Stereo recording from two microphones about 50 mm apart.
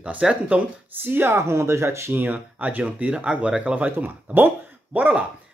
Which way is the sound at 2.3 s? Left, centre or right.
Right.